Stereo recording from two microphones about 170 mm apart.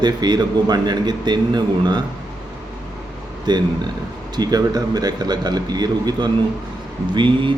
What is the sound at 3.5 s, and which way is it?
A man's voice, 25° right (ahead or behind).